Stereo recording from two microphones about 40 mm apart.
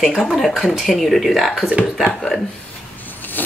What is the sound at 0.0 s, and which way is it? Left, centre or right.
Speech, centre.